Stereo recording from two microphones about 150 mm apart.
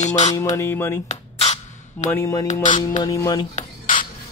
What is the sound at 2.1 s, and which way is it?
Speech, 20° left (ahead or behind).